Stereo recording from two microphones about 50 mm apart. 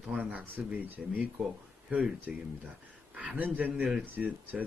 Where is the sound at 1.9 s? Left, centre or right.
Right.